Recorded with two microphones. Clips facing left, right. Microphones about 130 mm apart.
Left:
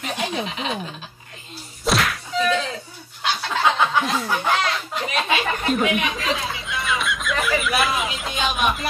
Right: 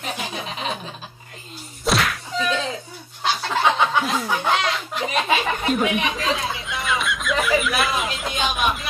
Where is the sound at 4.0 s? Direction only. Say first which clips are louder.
Even; centre (ahead or behind).